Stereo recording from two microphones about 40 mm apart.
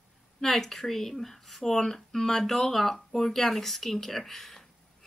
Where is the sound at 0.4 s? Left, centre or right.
Centre.